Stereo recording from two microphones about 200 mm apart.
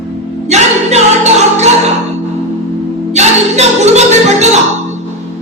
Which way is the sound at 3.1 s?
35° right (ahead or behind).